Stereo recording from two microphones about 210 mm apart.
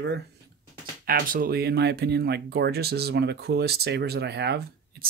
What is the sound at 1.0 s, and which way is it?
Speech, 40° right (ahead or behind).